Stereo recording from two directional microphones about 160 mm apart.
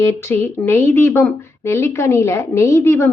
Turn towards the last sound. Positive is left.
turn(degrees=15)  # may be behind; listen again after turning